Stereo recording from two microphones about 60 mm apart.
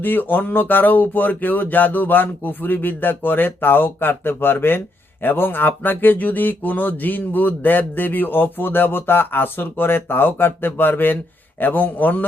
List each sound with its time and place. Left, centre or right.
0.0 s a man's voice: left